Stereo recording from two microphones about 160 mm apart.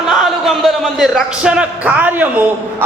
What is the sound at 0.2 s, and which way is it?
A man's voice, centre (ahead or behind).